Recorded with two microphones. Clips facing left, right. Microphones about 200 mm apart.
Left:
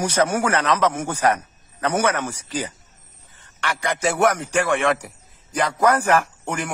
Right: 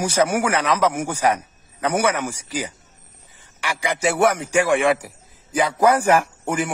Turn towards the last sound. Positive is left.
turn(degrees=-10)  # may be behind; listen again after turning